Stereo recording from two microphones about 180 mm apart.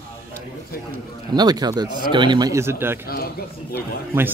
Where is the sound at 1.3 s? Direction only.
20° right (ahead or behind).